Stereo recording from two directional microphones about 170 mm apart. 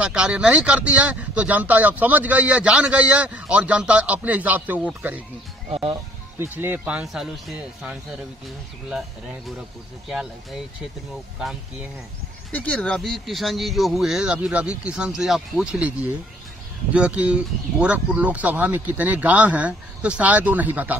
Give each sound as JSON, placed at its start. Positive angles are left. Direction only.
{"t": 0.0, "sound": "speech", "side_deg": -5}
{"t": 5.7, "sound": "speech", "side_deg": -35}
{"t": 6.4, "sound": "speech", "side_deg": -10}
{"t": 12.5, "sound": "speech", "side_deg": 10}
{"t": 16.9, "sound": "speech", "side_deg": -5}